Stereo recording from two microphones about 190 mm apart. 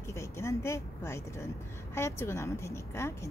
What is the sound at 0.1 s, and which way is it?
A woman's voice, 15° left (ahead or behind).